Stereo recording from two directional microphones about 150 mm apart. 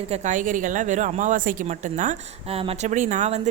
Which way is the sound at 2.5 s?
40° right (ahead or behind).